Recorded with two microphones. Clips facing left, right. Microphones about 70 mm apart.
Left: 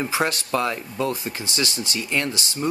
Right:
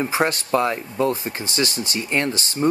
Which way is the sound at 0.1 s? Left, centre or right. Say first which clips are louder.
Right 3 dB; right.